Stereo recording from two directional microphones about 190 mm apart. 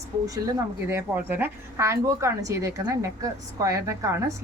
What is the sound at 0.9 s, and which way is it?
A woman's voice, 10° right (ahead or behind).